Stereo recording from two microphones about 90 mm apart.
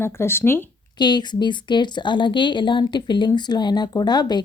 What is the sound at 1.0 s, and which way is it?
Speech, 55° left (ahead or behind).